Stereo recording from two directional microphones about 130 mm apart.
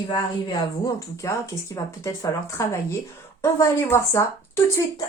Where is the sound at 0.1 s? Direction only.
30° left (ahead or behind).